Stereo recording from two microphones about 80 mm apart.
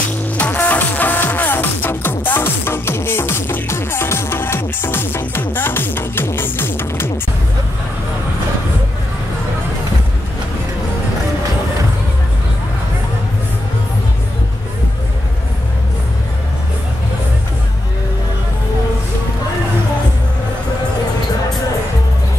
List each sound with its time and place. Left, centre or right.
0.4 s music: left